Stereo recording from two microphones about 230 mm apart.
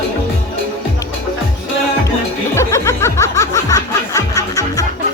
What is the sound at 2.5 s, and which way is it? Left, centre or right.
Music, centre.